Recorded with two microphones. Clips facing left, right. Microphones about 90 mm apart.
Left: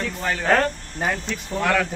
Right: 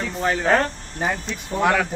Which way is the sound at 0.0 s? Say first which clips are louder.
Right 3 dB; 5° right (ahead or behind).